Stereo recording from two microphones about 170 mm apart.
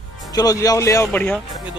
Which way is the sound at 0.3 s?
20° left (ahead or behind).